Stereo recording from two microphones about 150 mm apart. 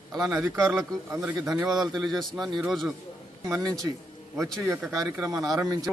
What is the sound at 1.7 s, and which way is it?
A man's voice, centre (ahead or behind).